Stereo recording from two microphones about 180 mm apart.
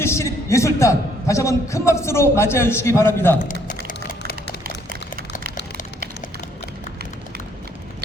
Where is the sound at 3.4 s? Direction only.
50° left (ahead or behind).